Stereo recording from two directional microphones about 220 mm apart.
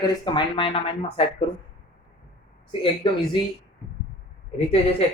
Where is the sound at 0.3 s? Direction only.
25° left (ahead or behind).